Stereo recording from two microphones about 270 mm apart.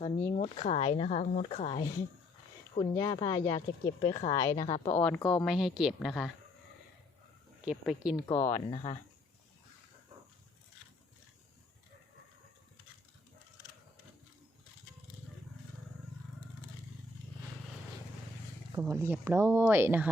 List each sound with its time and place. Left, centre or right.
0.0 s speech: left
2.9 s speech: centre
4.9 s speech: centre
7.6 s speech: centre
8.3 s speech: centre
18.7 s speech: centre